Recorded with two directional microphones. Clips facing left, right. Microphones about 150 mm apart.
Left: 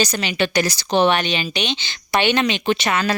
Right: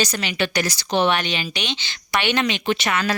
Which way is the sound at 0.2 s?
25° left (ahead or behind).